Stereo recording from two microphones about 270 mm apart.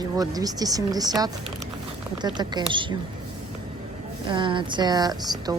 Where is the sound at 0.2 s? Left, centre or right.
Centre.